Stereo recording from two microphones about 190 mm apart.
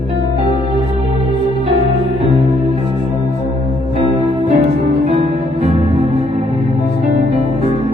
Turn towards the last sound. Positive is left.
turn(degrees=-30)  # may be behind; listen again after turning